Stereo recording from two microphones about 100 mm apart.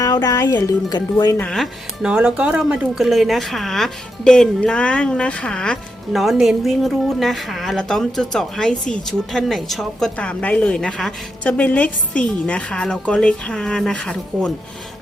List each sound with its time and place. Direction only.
0.0 s speech: 40° left (ahead or behind)
1.5 s a woman's voice: centre (ahead or behind)
2.0 s a woman's voice: 10° right (ahead or behind)
10.2 s a woman's voice: 15° left (ahead or behind)